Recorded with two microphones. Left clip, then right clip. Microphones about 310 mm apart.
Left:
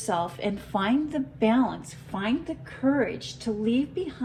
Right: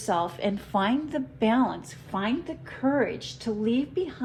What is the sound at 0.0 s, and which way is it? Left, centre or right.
A woman's voice, right.